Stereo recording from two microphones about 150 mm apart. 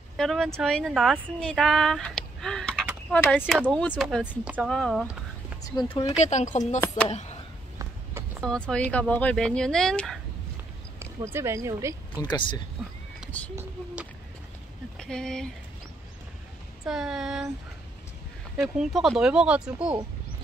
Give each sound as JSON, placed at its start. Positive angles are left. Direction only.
{"t": 0.2, "sound": "speech", "side_deg": 0}
{"t": 3.3, "sound": "speech", "side_deg": -5}
{"t": 3.6, "sound": "speech", "side_deg": 10}
{"t": 4.0, "sound": "speech", "side_deg": -5}
{"t": 4.6, "sound": "speech", "side_deg": 0}
{"t": 5.9, "sound": "speech", "side_deg": 40}
{"t": 8.4, "sound": "speech", "side_deg": 5}
{"t": 11.3, "sound": "speech", "side_deg": -20}
{"t": 12.2, "sound": "speech", "side_deg": 30}
{"t": 15.0, "sound": "speech", "side_deg": 5}
{"t": 16.8, "sound": "speech", "side_deg": -5}
{"t": 18.8, "sound": "speech", "side_deg": 0}